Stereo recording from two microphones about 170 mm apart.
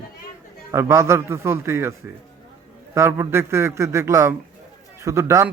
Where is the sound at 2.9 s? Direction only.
15° right (ahead or behind).